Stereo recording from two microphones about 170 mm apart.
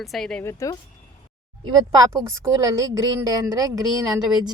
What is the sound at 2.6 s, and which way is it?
A woman's voice, 20° right (ahead or behind).